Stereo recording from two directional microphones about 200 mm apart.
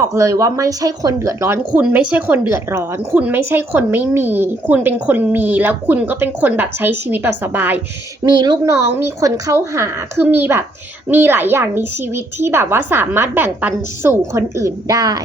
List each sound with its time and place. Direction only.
0.0 s speech: 15° right (ahead or behind)
8.2 s speech: 20° right (ahead or behind)